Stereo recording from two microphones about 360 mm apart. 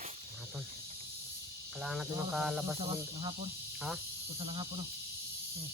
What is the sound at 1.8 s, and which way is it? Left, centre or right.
Speech, centre.